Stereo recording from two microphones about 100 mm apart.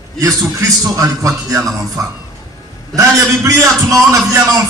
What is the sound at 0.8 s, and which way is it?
Speech, 35° right (ahead or behind).